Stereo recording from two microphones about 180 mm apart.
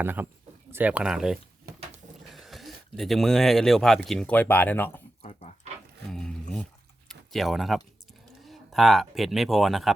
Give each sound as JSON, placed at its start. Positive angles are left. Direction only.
{"t": 0.0, "sound": "speech", "side_deg": -10}
{"t": 5.2, "sound": "pig", "side_deg": 35}
{"t": 6.1, "sound": "a sound", "side_deg": 5}
{"t": 7.1, "sound": "speech", "side_deg": 0}